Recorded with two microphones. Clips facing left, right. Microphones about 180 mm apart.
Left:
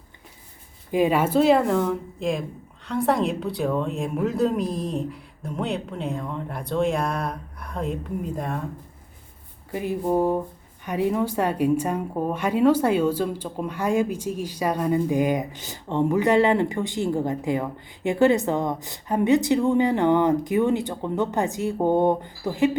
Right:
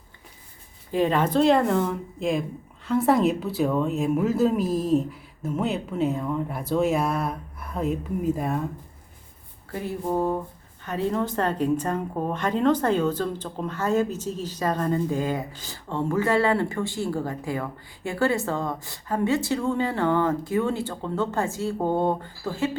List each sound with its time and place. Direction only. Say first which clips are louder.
0.9 s a woman's voice: left 2 dB; 10° left (ahead or behind); by 8.5 s 5° right (ahead or behind)
9.7 s a woman's voice: left 3 dB; 15° left (ahead or behind)